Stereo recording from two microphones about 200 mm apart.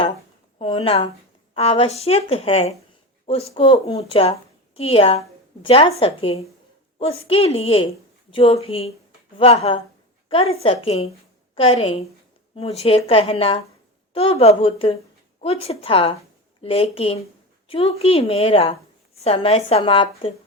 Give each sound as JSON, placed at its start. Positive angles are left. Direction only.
{"t": 0.6, "sound": "a woman's voice", "side_deg": 25}